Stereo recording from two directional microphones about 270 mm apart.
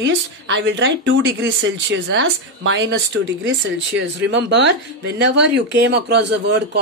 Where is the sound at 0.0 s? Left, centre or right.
Right.